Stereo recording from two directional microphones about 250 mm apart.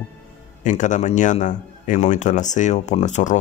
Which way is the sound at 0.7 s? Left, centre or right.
Left.